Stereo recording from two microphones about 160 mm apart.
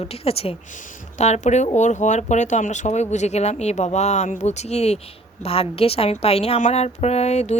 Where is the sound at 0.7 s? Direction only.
55° left (ahead or behind).